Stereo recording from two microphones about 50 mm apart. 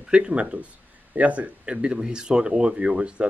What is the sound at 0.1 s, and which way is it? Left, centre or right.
Speech, right.